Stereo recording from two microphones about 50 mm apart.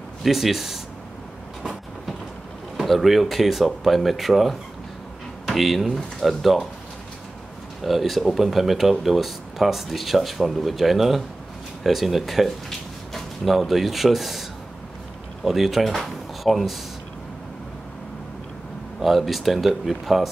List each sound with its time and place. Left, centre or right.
0.2 s speech: centre
2.8 s speech: centre
7.8 s speech: centre
15.4 s speech: centre
18.9 s speech: centre